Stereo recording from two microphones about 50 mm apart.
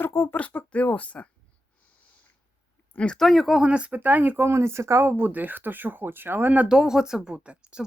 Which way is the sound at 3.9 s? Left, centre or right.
Right.